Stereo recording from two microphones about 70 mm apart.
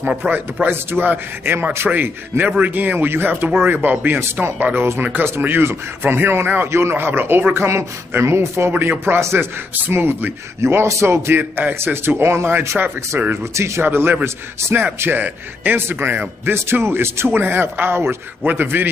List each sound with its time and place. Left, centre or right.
0.0 s a man's voice: centre
0.3 s a man's voice: right